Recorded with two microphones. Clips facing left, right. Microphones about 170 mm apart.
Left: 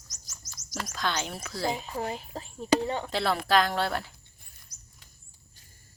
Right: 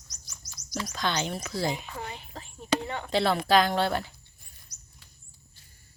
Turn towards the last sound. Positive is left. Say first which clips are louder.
# even
turn(degrees=55)  # may be behind; listen again after turning